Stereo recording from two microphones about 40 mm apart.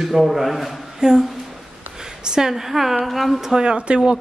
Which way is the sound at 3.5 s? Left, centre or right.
Right.